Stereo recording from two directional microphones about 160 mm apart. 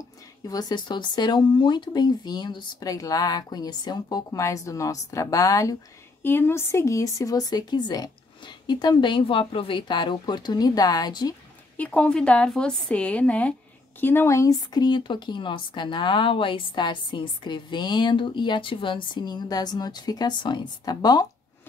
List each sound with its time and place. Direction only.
0.5 s speech: 25° left (ahead or behind)
11.7 s a woman's voice: 10° left (ahead or behind); by 21.3 s 25° left (ahead or behind)